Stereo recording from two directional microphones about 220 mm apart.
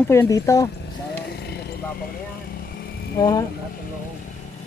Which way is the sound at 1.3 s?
45° left (ahead or behind).